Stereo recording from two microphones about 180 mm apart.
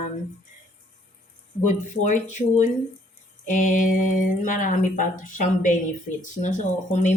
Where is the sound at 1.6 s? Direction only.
45° left (ahead or behind).